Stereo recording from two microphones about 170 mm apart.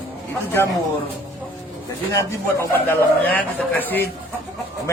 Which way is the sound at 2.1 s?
15° left (ahead or behind).